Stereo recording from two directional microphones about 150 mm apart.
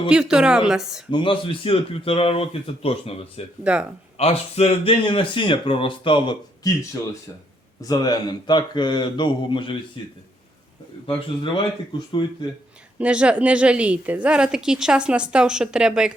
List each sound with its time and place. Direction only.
0.1 s speech: 5° right (ahead or behind)
1.1 s speech: 35° left (ahead or behind)
3.6 s a woman's voice: 10° right (ahead or behind)
4.2 s speech: 45° left (ahead or behind)
7.8 s speech: 25° left (ahead or behind)
11.0 s speech: 35° left (ahead or behind)
13.0 s a woman's voice: 10° right (ahead or behind)